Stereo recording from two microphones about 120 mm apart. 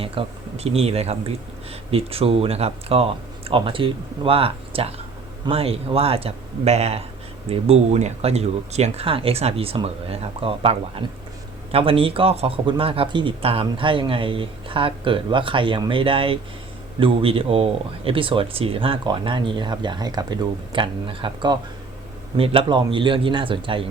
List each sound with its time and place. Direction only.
0.0 s speech: 50° right (ahead or behind)
22.4 s speech: 50° right (ahead or behind)